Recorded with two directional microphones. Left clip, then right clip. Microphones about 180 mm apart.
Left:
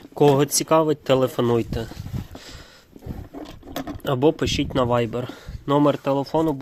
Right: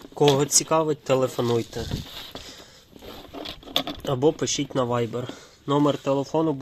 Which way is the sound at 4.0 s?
35° left (ahead or behind).